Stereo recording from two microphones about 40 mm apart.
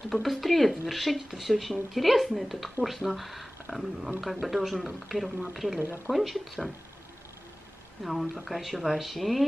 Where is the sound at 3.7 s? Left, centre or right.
Left.